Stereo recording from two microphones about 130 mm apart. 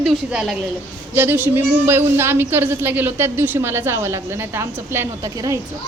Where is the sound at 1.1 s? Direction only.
15° right (ahead or behind).